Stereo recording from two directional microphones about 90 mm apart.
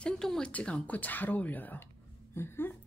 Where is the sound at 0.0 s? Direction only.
10° left (ahead or behind).